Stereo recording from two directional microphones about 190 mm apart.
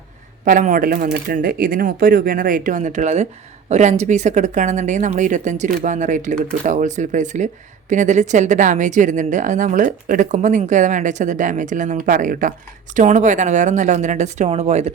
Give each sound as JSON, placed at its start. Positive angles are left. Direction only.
{"t": 0.4, "sound": "speech", "side_deg": -40}